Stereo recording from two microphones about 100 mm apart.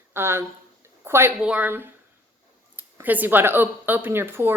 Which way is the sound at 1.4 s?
15° right (ahead or behind).